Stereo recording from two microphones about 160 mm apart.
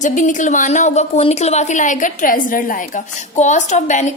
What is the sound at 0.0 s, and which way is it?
A woman's voice, 50° left (ahead or behind).